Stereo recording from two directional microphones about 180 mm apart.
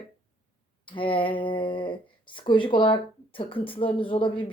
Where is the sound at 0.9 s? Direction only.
30° left (ahead or behind).